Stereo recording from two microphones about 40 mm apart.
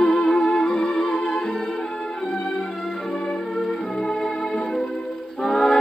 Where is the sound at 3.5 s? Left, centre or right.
Centre.